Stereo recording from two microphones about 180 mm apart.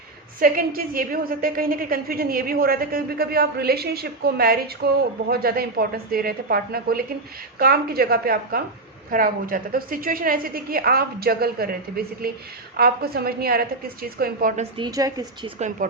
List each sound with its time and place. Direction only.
0.3 s a woman's voice: 50° right (ahead or behind)
14.5 s a woman's voice: 35° right (ahead or behind)
14.8 s a woman's voice: 20° right (ahead or behind)
15.5 s a woman's voice: 40° right (ahead or behind)